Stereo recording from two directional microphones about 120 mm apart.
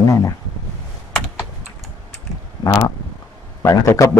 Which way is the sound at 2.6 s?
25° left (ahead or behind).